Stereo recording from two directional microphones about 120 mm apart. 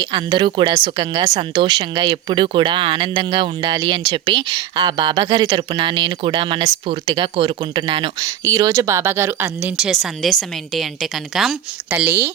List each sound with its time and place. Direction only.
0.0 s speech: 40° right (ahead or behind)
8.2 s speech: 30° right (ahead or behind)
9.6 s speech: 5° right (ahead or behind)
11.9 s speech: 15° right (ahead or behind)